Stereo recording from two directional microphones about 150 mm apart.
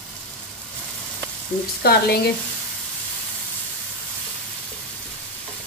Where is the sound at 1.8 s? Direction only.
90° left.